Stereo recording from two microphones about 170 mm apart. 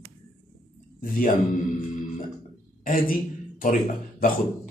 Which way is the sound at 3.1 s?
55° left (ahead or behind).